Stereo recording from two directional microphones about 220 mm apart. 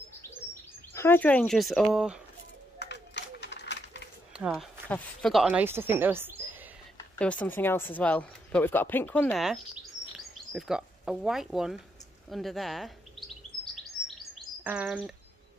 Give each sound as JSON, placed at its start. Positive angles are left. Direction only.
{"t": 0.9, "sound": "speech", "side_deg": 10}
{"t": 2.8, "sound": "run", "side_deg": 50}
{"t": 4.3, "sound": "speech", "side_deg": -5}
{"t": 7.2, "sound": "speech", "side_deg": 5}
{"t": 14.0, "sound": "chirp", "side_deg": -5}